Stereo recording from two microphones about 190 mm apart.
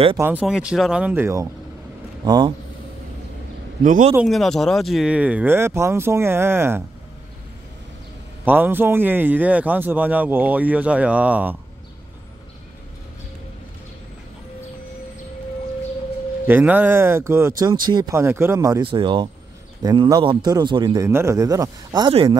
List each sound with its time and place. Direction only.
0.2 s a man's voice: 10° right (ahead or behind)
3.8 s a man's voice: 45° right (ahead or behind)
4.1 s a man's voice: 5° right (ahead or behind)
8.5 s a man's voice: 10° right (ahead or behind)
16.4 s a man's voice: 10° right (ahead or behind); by 22.4 s 25° right (ahead or behind)